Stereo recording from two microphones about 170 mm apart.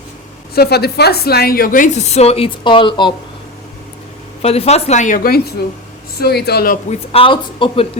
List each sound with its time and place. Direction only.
0.5 s a woman's voice: 70° left (ahead or behind); by 3.2 s 25° left (ahead or behind)
4.4 s a woman's voice: 35° left (ahead or behind); by 5.4 s 55° left (ahead or behind)
6.1 s speech: 70° left (ahead or behind)
7.1 s speech: 30° left (ahead or behind)